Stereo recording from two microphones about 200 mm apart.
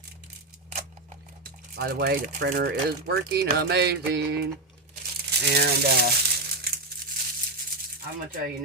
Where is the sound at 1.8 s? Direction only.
50° right (ahead or behind).